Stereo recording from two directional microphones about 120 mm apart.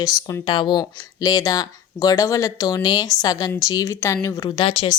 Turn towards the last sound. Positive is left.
turn(degrees=55)  # may be behind; listen again after turning